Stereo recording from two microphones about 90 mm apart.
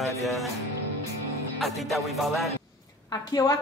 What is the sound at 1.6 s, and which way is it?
Music, centre (ahead or behind).